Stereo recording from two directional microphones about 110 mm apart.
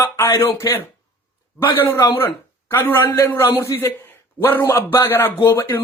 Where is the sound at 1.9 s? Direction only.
35° left (ahead or behind).